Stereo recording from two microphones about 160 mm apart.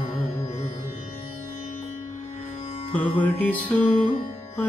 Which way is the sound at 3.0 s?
10° left (ahead or behind).